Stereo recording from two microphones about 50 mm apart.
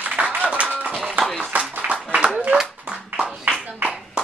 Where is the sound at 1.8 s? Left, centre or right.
Right.